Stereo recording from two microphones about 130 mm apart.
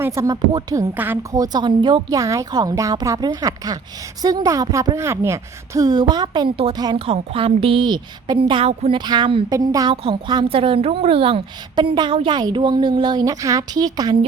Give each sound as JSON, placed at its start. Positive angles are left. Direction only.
{"t": 0.0, "sound": "a woman's voice", "side_deg": -20}
{"t": 0.9, "sound": "a woman's voice", "side_deg": -15}
{"t": 1.3, "sound": "a woman's voice", "side_deg": -30}
{"t": 9.5, "sound": "a woman's voice", "side_deg": -25}
{"t": 9.9, "sound": "a woman's voice", "side_deg": -40}